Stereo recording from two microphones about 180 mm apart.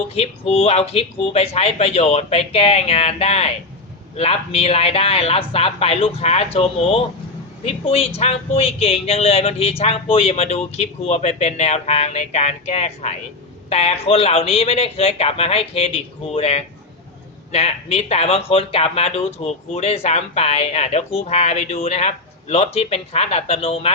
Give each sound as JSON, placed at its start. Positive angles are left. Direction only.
{"t": 0.1, "sound": "speech", "side_deg": 35}